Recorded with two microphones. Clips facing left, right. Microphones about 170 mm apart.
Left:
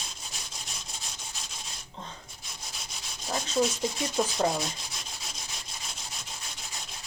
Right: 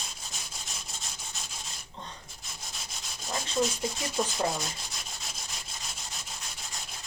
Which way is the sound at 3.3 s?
Centre (ahead or behind).